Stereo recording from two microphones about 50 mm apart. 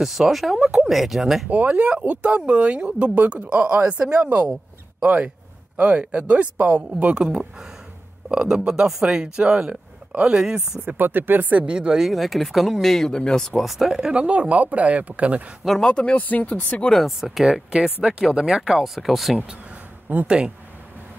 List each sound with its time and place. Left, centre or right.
0.0 s speech: centre
1.5 s speech: right
6.9 s speech: right
10.9 s speech: right
11.6 s speech: right
12.0 s speech: centre
13.6 s speech: centre
13.8 s speech: centre
14.2 s speech: right
15.8 s speech: left
17.2 s speech: centre
20.2 s speech: centre